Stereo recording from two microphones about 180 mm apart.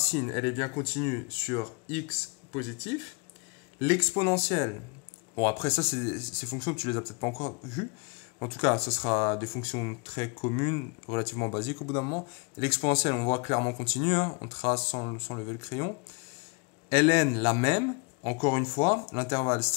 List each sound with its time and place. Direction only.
0.1 s speech: 35° left (ahead or behind)
3.8 s a man's voice: 25° left (ahead or behind)
16.9 s a man's voice: 30° left (ahead or behind)